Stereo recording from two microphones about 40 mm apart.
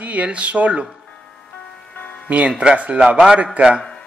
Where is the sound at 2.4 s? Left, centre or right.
Right.